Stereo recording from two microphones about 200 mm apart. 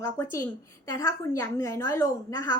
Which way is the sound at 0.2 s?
15° left (ahead or behind).